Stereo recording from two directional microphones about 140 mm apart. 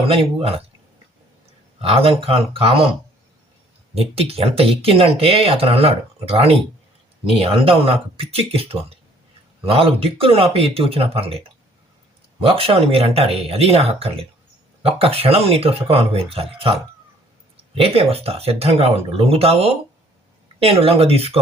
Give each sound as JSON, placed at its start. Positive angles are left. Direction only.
{"t": 0.1, "sound": "speech", "side_deg": -45}
{"t": 1.8, "sound": "speech", "side_deg": -45}
{"t": 3.9, "sound": "speech", "side_deg": -45}
{"t": 17.7, "sound": "speech", "side_deg": -45}